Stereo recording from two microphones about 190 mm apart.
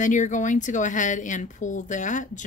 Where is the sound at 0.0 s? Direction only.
40° left (ahead or behind).